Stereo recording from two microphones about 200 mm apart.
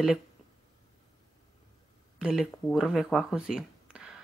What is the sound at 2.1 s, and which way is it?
Speech, centre (ahead or behind).